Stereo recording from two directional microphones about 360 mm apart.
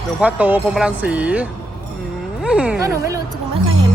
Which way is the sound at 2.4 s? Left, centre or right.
Centre.